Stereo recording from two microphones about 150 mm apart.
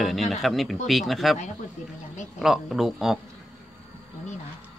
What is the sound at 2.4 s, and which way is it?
Speech, centre (ahead or behind).